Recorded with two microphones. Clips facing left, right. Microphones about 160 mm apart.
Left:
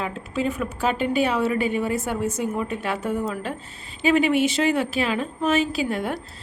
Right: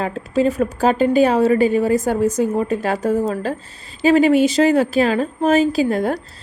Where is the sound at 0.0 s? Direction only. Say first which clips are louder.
Right 8 dB; 40° right (ahead or behind).